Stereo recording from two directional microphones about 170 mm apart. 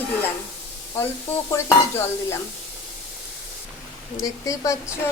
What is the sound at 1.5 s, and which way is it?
Speech, 15° left (ahead or behind).